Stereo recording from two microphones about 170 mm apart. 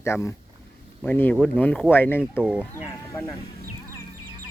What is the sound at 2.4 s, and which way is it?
Speech, 5° right (ahead or behind).